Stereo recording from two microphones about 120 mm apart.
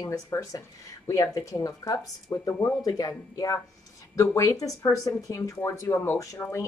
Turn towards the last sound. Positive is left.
turn(degrees=25)  # may be behind; listen again after turning